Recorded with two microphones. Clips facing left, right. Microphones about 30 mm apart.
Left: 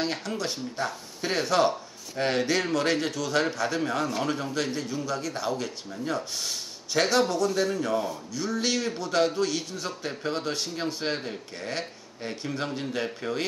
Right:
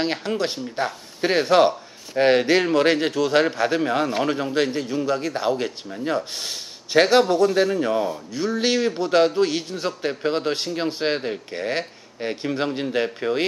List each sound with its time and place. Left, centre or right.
0.0 s a man's voice: right